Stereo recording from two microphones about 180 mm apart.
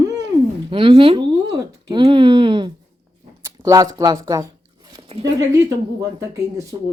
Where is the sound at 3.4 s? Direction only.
15° right (ahead or behind).